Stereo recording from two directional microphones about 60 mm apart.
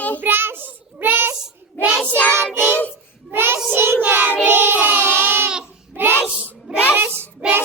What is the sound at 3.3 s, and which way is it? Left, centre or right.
Child singing, right.